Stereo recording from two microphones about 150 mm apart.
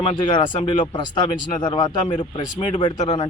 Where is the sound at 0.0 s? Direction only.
30° left (ahead or behind).